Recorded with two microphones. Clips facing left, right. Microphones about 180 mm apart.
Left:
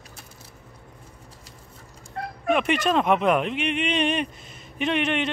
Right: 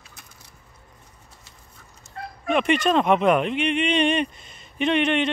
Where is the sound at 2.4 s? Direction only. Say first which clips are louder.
Right 2 dB; 5° left (ahead or behind).